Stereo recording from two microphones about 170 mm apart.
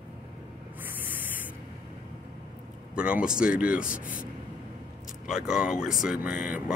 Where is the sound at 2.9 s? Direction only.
5° right (ahead or behind).